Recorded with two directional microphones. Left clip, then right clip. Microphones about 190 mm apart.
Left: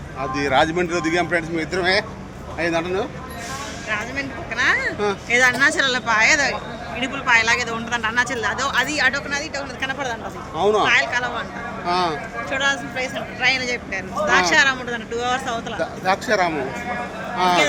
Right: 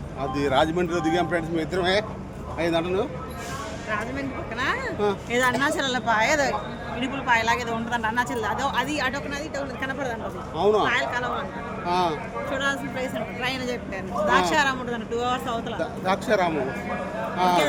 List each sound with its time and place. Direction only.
0.2 s speech: 5° left (ahead or behind)
3.8 s speech: 25° right (ahead or behind)
10.6 s speech: 5° left (ahead or behind)
10.8 s speech: 25° right (ahead or behind)
11.9 s speech: 5° left (ahead or behind)
12.5 s speech: 30° right (ahead or behind)
15.8 s speech: 5° left (ahead or behind)